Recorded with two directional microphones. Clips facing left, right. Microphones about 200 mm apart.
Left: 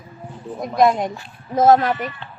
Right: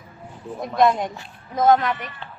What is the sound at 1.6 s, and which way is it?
Speech, 40° left (ahead or behind).